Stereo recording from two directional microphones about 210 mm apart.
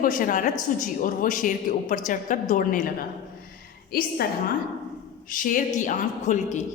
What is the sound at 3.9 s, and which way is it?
A woman's voice, 45° left (ahead or behind).